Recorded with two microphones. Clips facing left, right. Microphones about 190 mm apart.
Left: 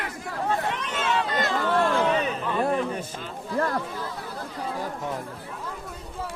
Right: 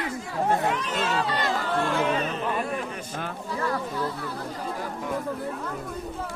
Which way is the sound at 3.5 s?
50° left (ahead or behind).